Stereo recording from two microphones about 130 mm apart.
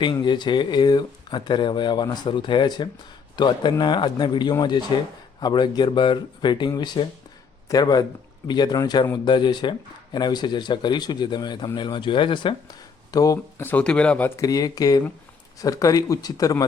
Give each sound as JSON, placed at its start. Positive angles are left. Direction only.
{"t": 0.0, "sound": "speech", "side_deg": 40}
{"t": 14.4, "sound": "speech", "side_deg": 30}